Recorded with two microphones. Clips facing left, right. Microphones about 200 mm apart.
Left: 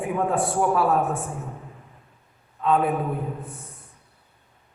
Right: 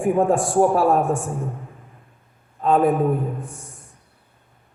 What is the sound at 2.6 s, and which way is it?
Speech, 45° right (ahead or behind).